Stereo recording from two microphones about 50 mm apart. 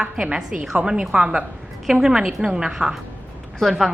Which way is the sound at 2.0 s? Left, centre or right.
Centre.